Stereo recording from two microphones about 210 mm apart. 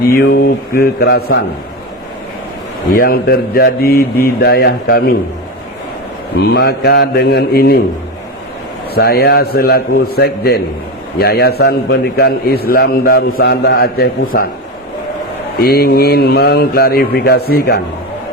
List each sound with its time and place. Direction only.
0.1 s a man's voice: 45° left (ahead or behind)
2.9 s a man's voice: 45° left (ahead or behind)
6.5 s a man's voice: 50° left (ahead or behind)
9.0 s a man's voice: 50° left (ahead or behind)
15.5 s a man's voice: 50° left (ahead or behind)